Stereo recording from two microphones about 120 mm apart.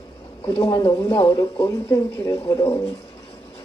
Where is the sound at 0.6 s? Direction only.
45° left (ahead or behind).